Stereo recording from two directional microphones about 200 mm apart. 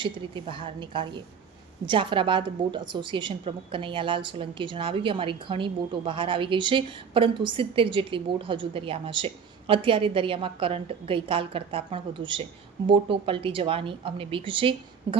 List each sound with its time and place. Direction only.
0.0 s a woman's voice: 25° right (ahead or behind)